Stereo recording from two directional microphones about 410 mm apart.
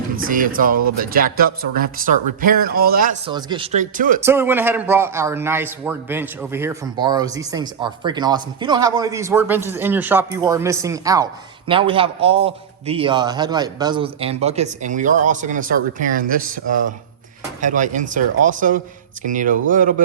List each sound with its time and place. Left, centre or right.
0.2 s speech: centre
4.2 s speech: centre